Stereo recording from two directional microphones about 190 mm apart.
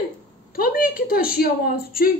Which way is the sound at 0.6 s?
50° left (ahead or behind).